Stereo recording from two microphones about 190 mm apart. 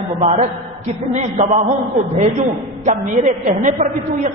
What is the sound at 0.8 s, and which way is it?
Speech, 35° right (ahead or behind).